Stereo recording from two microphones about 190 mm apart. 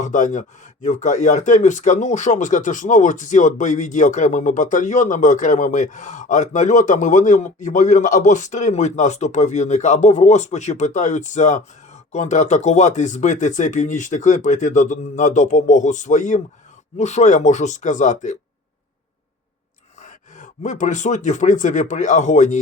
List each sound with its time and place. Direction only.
0.0 s speech: 40° left (ahead or behind)
20.0 s speech: 40° left (ahead or behind)